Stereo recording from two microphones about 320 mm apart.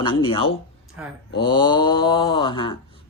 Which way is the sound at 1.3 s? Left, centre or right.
Centre.